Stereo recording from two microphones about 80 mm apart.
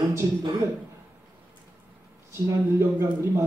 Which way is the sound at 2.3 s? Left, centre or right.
Right.